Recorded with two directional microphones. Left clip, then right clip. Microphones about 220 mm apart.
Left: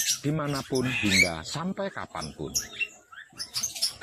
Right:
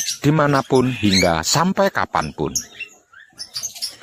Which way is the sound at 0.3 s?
40° right (ahead or behind).